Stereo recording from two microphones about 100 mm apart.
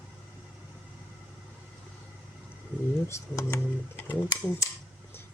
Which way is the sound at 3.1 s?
30° left (ahead or behind).